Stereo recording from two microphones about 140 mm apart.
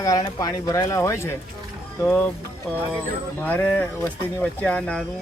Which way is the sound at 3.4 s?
10° left (ahead or behind).